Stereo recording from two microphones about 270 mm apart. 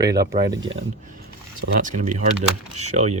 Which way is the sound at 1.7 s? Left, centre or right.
Right.